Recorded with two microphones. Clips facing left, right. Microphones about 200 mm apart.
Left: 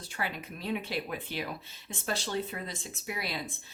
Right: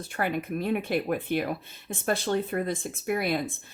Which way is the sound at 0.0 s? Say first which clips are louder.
Right 8 dB; 55° right (ahead or behind).